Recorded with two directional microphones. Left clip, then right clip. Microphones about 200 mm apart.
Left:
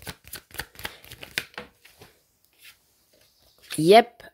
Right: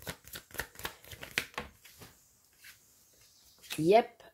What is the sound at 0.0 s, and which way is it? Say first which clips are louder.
Shuffling cards: left 4 dB; 25° left (ahead or behind).